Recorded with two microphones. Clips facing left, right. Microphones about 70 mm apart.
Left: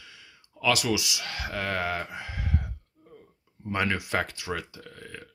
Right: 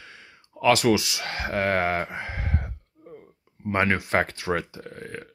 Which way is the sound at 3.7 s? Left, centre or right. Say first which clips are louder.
Right 5 dB; right.